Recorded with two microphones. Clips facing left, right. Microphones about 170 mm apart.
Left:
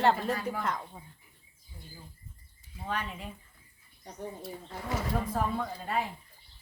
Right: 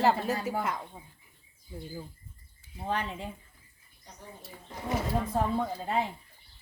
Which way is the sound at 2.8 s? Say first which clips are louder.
Right 3 dB; 25° right (ahead or behind).